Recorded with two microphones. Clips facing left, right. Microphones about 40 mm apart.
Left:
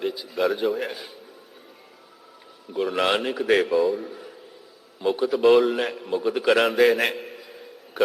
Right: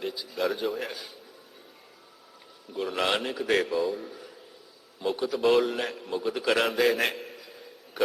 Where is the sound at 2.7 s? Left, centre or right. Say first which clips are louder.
Left 5 dB; centre.